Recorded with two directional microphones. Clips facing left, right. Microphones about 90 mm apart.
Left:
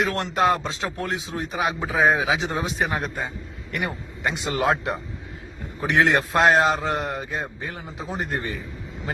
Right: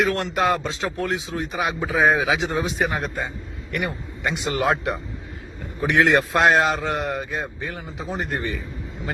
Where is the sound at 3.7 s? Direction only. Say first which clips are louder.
Right 2 dB; 25° left (ahead or behind).